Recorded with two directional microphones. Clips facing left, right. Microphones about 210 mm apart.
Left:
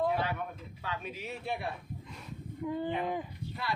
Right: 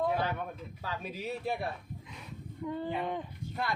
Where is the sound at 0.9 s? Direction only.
35° right (ahead or behind).